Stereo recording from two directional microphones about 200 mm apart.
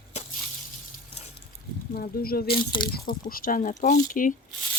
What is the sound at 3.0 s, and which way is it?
Speech, 45° left (ahead or behind).